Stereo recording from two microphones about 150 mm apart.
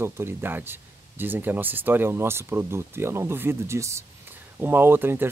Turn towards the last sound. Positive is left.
turn(degrees=-15)  # may be behind; listen again after turning